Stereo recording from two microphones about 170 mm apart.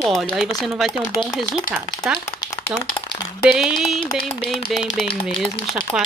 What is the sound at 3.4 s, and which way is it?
A woman's voice, 5° right (ahead or behind).